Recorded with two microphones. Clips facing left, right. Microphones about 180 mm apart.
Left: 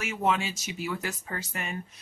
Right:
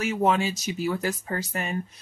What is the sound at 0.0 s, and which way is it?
Speech, 40° right (ahead or behind).